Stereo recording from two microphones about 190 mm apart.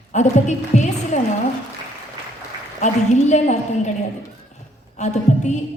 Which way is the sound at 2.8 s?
35° left (ahead or behind).